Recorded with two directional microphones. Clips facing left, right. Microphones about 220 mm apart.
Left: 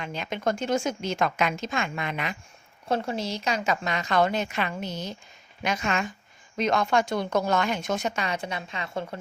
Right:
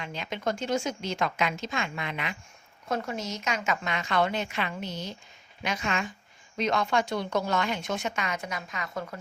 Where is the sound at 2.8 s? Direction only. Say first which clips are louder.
Left 4 dB; 30° left (ahead or behind).